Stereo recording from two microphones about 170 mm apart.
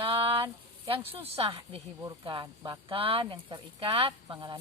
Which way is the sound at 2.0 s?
25° right (ahead or behind).